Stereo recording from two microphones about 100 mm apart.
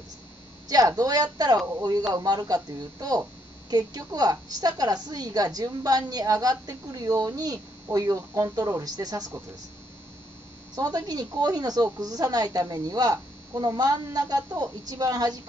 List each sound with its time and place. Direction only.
0.7 s a woman's voice: 40° right (ahead or behind)
10.8 s a woman's voice: 40° right (ahead or behind)